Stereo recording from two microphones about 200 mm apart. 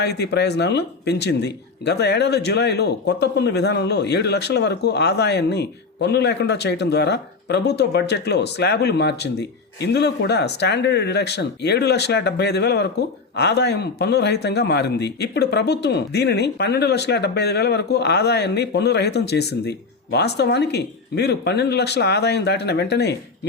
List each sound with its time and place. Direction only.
0.0 s speech: 55° left (ahead or behind)